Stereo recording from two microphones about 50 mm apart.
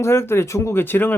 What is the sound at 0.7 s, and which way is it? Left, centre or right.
Speech, left.